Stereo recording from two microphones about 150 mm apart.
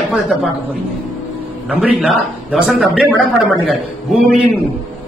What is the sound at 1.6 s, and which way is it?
Speech, 5° right (ahead or behind).